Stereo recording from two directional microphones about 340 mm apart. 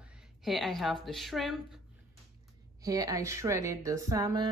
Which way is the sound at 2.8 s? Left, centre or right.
Centre.